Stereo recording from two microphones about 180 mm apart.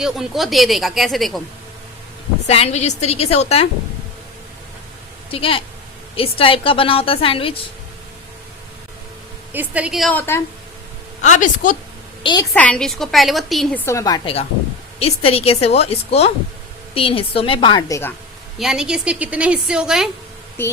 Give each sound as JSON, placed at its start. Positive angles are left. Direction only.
{"t": 0.0, "sound": "a woman's voice", "side_deg": 0}
{"t": 2.5, "sound": "a woman's voice", "side_deg": 35}
{"t": 5.3, "sound": "a woman's voice", "side_deg": 30}
{"t": 9.5, "sound": "a woman's voice", "side_deg": -10}
{"t": 11.2, "sound": "a woman's voice", "side_deg": 45}
{"t": 12.2, "sound": "a woman's voice", "side_deg": 25}
{"t": 12.5, "sound": "a woman's voice", "side_deg": 5}
{"t": 13.8, "sound": "a woman's voice", "side_deg": 20}
{"t": 14.9, "sound": "a woman's voice", "side_deg": 35}
{"t": 18.6, "sound": "a woman's voice", "side_deg": -5}
{"t": 20.6, "sound": "speech", "side_deg": 10}